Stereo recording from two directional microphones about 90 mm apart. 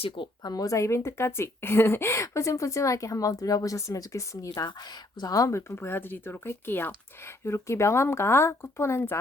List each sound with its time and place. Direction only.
0.4 s speech: 45° left (ahead or behind); by 9.1 s 25° left (ahead or behind)